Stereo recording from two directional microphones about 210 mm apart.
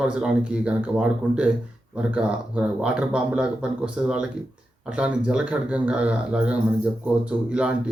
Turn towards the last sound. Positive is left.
turn(degrees=-5)  # may be behind; listen again after turning